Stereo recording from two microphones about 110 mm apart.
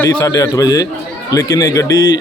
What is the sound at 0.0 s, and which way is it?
A man's voice, 30° left (ahead or behind).